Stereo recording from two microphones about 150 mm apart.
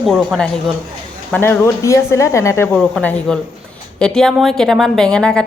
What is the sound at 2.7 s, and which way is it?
Speech, 5° left (ahead or behind).